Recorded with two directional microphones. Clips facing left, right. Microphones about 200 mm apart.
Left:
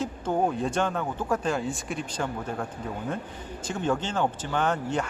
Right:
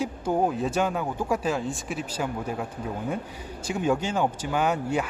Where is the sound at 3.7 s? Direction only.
10° right (ahead or behind).